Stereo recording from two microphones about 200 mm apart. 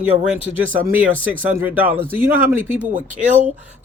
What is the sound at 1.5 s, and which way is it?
A man's voice, 10° right (ahead or behind).